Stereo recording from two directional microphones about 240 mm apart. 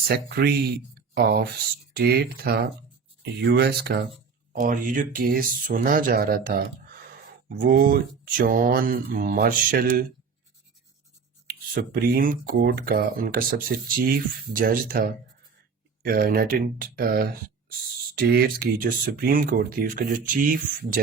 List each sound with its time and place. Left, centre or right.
0.1 s speech: right
11.4 s speech: right